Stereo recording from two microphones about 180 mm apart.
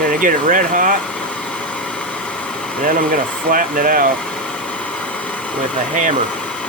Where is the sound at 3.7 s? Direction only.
50° right (ahead or behind).